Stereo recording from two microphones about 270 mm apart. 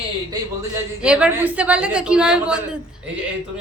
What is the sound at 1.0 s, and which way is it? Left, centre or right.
Speech, centre.